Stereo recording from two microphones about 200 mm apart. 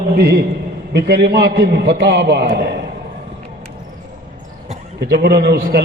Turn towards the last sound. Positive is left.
turn(degrees=-55)  # may be behind; listen again after turning